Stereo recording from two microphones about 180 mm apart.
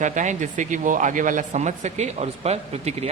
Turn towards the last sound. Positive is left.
turn(degrees=-35)  # may be behind; listen again after turning